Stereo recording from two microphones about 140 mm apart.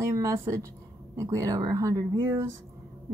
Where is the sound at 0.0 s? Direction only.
20° right (ahead or behind).